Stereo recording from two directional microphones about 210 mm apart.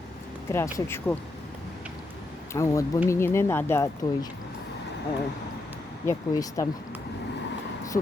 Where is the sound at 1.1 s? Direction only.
10° left (ahead or behind).